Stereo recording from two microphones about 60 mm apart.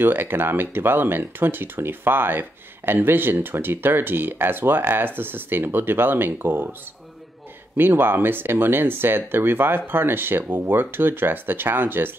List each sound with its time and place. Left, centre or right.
0.0 s speech: right
7.7 s speech: right